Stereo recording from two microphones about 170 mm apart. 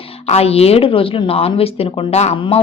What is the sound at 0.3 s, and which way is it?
A woman's voice, 35° left (ahead or behind).